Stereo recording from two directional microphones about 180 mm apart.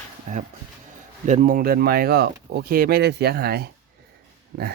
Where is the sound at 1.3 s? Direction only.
45° right (ahead or behind).